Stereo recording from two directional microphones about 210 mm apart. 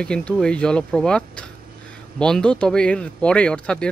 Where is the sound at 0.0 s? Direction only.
5° left (ahead or behind).